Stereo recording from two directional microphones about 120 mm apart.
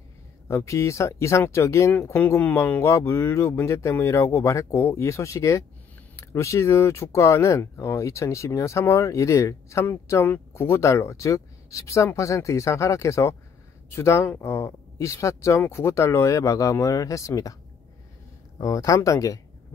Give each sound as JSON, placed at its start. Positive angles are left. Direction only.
{"t": 0.5, "sound": "speech", "side_deg": 25}
{"t": 18.6, "sound": "speech", "side_deg": 30}